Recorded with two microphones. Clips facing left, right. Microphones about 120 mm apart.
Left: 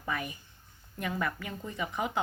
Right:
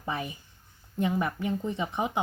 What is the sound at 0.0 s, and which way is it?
A woman's voice, 25° right (ahead or behind).